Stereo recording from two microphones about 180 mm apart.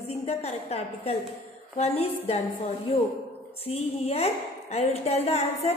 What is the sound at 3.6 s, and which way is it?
A woman's voice, 35° left (ahead or behind).